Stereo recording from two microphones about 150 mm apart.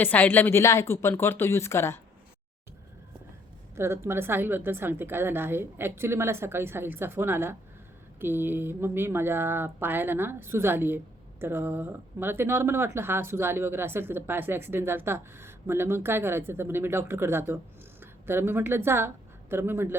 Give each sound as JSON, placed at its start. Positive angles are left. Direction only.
{"t": 0.0, "sound": "speech", "side_deg": 10}
{"t": 3.8, "sound": "speech", "side_deg": -15}